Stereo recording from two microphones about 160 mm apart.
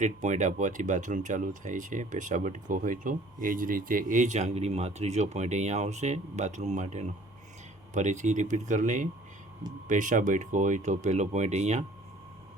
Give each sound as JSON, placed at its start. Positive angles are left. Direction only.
{"t": 0.0, "sound": "speech", "side_deg": -50}